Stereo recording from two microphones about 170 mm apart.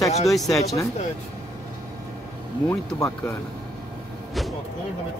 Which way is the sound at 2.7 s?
15° left (ahead or behind).